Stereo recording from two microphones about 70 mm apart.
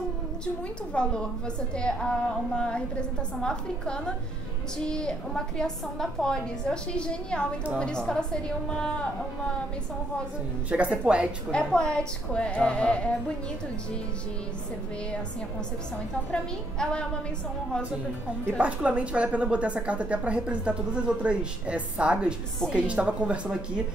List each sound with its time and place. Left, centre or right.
0.9 s a woman's voice: centre
10.9 s a woman's voice: centre
11.5 s a woman's voice: centre
18.6 s a woman's voice: centre